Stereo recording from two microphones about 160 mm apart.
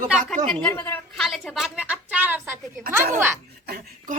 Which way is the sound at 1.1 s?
Centre (ahead or behind).